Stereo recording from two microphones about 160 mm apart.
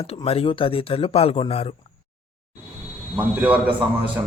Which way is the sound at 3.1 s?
10° right (ahead or behind).